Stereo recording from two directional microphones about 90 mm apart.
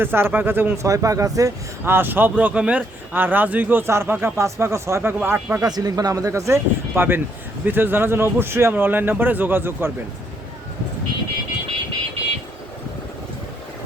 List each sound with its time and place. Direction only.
0.0 s speech: 25° right (ahead or behind)
0.9 s speech: 40° right (ahead or behind)
1.8 s speech: 25° right (ahead or behind)
5.6 s speech: 45° right (ahead or behind); by 9.9 s 25° right (ahead or behind)